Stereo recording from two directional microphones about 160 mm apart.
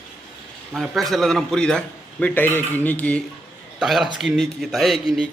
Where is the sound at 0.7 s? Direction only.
Centre (ahead or behind).